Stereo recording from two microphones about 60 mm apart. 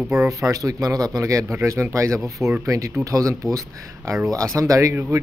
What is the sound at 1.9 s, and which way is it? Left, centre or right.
Speech, right.